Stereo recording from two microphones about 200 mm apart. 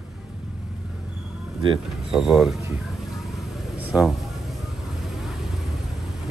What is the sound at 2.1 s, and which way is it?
Speech, centre (ahead or behind).